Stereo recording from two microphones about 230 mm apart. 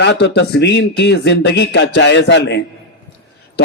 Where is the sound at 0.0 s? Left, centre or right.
Left.